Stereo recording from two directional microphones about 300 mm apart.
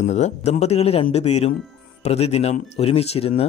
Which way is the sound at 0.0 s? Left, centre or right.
Left.